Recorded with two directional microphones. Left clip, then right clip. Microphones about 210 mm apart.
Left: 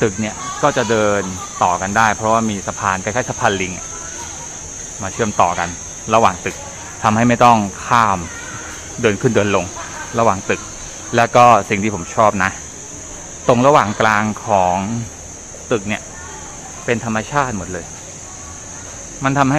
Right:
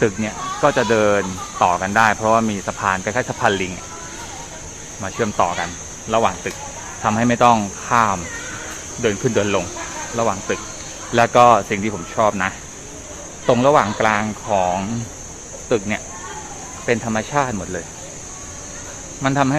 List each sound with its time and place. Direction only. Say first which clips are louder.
0.0 s speech: left 1 dB; 5° left (ahead or behind)
5.0 s speech: left 3 dB; 10° left (ahead or behind)
15.7 s speech: left 1 dB; 5° left (ahead or behind)
19.2 s speech: left 2 dB; 10° left (ahead or behind)